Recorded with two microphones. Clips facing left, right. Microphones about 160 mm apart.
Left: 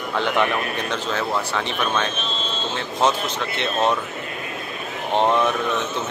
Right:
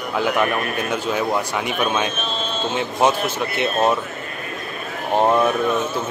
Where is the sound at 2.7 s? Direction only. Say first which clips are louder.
Right 2 dB; 10° right (ahead or behind).